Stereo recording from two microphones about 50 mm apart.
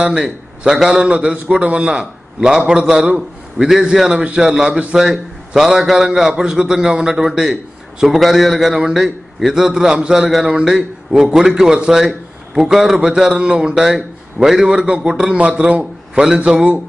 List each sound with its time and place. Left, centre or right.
0.0 s a man's voice: centre
4.9 s a man's voice: centre
15.8 s a man's voice: centre